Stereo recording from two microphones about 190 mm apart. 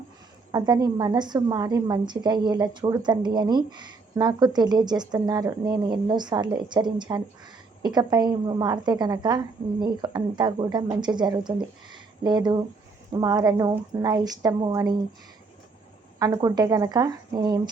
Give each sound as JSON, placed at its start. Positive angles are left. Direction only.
{"t": 0.5, "sound": "a woman's voice", "side_deg": -20}
{"t": 11.9, "sound": "a sound", "side_deg": -25}
{"t": 13.1, "sound": "a woman's voice", "side_deg": -20}
{"t": 16.1, "sound": "a woman's voice", "side_deg": -20}